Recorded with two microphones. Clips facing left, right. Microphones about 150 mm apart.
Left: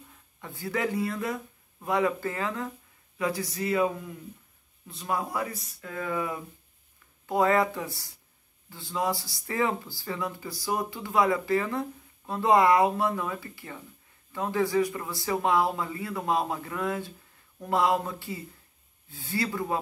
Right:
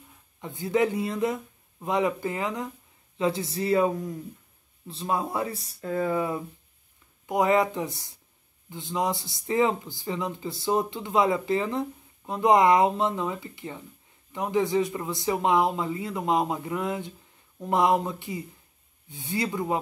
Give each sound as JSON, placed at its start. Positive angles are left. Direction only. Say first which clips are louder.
{"t": 0.4, "sound": "speech", "louder": "right 6 dB", "side_deg": -20}
{"t": 7.2, "sound": "speech", "louder": "right 1 dB", "side_deg": -15}